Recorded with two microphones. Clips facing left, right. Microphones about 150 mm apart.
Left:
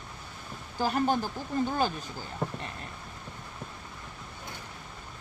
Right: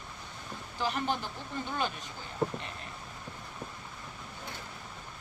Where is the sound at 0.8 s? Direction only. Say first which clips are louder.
Left 5 dB; 40° left (ahead or behind).